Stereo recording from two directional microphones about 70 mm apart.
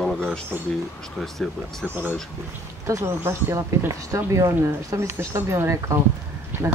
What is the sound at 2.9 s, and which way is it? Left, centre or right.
Speech, right.